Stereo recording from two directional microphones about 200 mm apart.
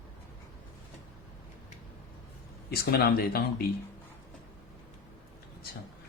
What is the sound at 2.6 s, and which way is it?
Speech, 50° left (ahead or behind).